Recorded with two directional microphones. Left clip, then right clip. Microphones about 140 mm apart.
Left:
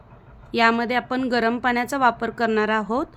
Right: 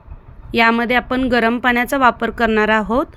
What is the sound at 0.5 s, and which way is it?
A woman's voice, 15° right (ahead or behind).